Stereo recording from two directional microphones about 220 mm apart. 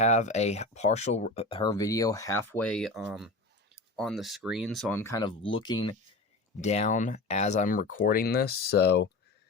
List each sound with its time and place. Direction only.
0.0 s speech: 30° left (ahead or behind)
6.6 s speech: 30° left (ahead or behind); by 9.0 s 50° left (ahead or behind)